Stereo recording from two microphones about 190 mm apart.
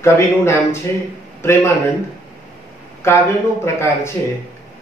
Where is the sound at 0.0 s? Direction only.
15° left (ahead or behind).